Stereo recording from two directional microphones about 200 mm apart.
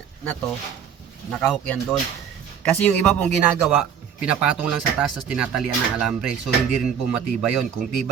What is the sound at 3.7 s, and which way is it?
Speech, 5° right (ahead or behind).